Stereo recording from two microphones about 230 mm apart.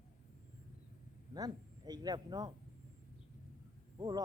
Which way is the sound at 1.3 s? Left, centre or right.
Centre.